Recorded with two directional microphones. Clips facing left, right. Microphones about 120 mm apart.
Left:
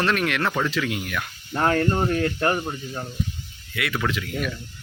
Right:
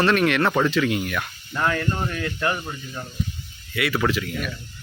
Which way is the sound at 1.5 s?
40° left (ahead or behind).